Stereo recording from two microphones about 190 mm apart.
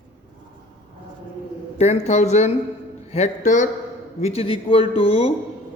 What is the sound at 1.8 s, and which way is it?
Mantra, 35° left (ahead or behind).